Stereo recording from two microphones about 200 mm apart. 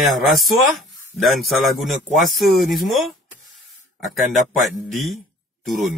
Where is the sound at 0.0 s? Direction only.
Centre (ahead or behind).